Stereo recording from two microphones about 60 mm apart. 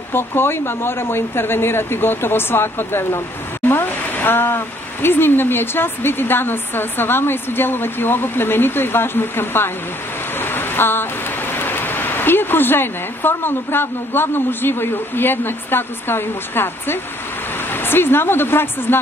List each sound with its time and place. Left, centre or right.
0.1 s speech: left
10.4 s a sound: left
11.5 s speech: left